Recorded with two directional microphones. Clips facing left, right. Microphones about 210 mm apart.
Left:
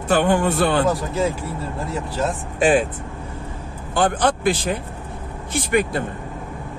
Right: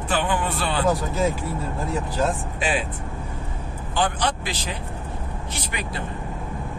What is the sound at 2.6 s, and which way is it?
Speech, 50° left (ahead or behind).